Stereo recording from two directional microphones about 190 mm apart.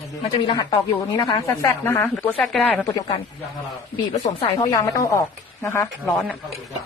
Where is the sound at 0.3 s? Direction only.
25° left (ahead or behind); by 2.8 s 5° left (ahead or behind).